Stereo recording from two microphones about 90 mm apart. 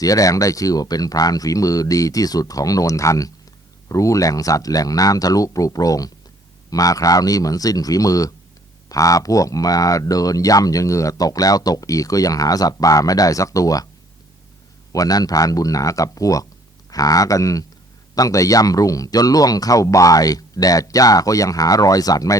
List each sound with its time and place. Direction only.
0.0 s speech: 40° left (ahead or behind)
14.9 s speech: 45° left (ahead or behind)